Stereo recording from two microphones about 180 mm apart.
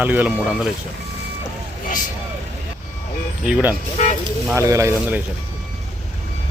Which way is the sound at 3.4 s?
10° right (ahead or behind).